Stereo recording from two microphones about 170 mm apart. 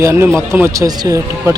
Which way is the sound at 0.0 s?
15° right (ahead or behind).